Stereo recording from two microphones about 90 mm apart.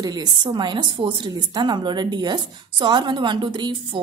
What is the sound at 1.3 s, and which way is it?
A woman's voice, 50° right (ahead or behind).